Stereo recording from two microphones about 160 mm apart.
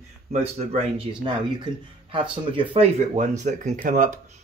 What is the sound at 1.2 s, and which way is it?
Speech, 30° right (ahead or behind).